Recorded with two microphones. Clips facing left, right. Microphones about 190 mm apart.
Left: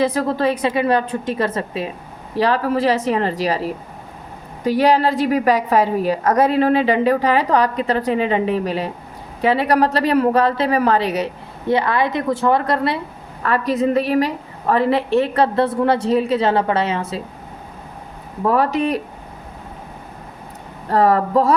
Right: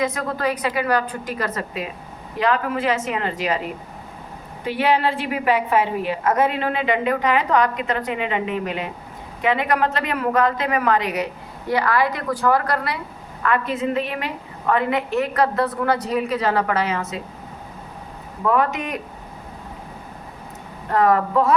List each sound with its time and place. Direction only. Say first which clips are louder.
0.0 s a woman's voice: left 5 dB; 30° left (ahead or behind)
13.4 s a woman's voice: left 4 dB; 35° left (ahead or behind)
18.4 s a woman's voice: left 4 dB; 35° left (ahead or behind)
20.9 s a woman's voice: left 3 dB; 35° left (ahead or behind)